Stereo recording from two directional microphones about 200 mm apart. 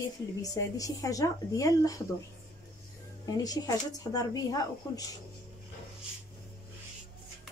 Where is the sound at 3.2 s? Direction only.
20° left (ahead or behind).